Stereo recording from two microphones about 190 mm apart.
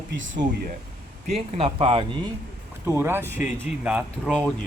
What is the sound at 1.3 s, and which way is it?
Speech, 30° right (ahead or behind).